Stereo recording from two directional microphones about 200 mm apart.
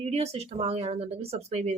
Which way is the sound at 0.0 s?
30° right (ahead or behind).